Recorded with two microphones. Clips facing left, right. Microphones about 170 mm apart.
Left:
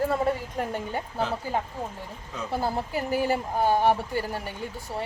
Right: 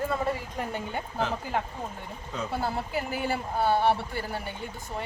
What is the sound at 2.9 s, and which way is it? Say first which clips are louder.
Speech: left 4 dB; 40° left (ahead or behind).